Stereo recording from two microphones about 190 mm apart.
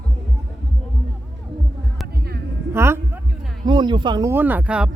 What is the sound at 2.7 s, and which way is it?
Music, 15° right (ahead or behind).